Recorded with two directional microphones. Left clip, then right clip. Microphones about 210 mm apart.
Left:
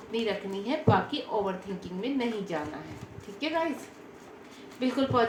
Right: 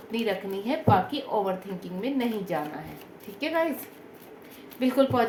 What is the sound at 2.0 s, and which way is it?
A woman's voice, 50° right (ahead or behind).